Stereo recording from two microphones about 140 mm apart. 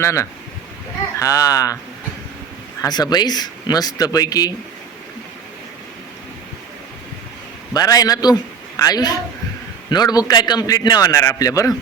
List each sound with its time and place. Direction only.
0.0 s a man's voice: 20° left (ahead or behind)
2.8 s a man's voice: 30° left (ahead or behind)
7.7 s a man's voice: 25° left (ahead or behind)